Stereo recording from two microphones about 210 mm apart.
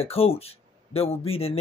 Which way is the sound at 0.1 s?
30° left (ahead or behind).